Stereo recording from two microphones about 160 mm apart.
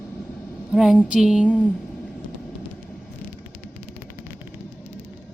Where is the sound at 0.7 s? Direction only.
Centre (ahead or behind).